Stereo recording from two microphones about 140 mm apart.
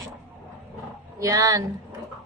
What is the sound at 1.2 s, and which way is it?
Speech, 25° right (ahead or behind).